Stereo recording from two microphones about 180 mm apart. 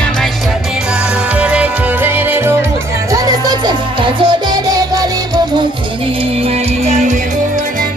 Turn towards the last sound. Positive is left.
turn(degrees=-40)  # may be behind; listen again after turning